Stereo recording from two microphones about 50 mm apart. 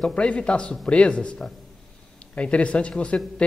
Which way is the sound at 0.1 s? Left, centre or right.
Left.